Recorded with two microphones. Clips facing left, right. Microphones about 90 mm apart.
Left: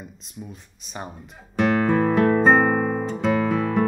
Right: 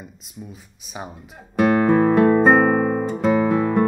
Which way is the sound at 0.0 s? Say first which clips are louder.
Even; centre (ahead or behind).